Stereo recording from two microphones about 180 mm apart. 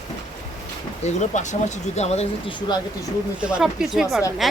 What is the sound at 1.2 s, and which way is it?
Speech, 40° left (ahead or behind).